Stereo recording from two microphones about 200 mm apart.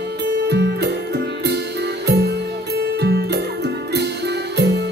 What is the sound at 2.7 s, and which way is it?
Music, 55° right (ahead or behind).